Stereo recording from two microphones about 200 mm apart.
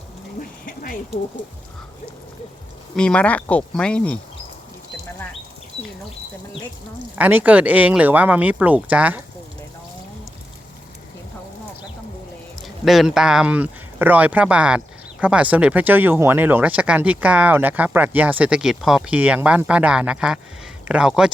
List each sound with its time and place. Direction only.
0.6 s a sound: 45° left (ahead or behind)
2.9 s speech: 5° left (ahead or behind)
7.2 s speech: 10° right (ahead or behind)
12.6 s speech: centre (ahead or behind)